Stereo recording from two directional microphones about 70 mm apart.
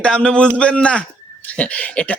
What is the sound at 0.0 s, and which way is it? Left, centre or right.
A man's voice, centre.